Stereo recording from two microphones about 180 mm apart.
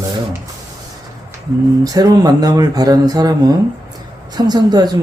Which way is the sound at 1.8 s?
20° right (ahead or behind).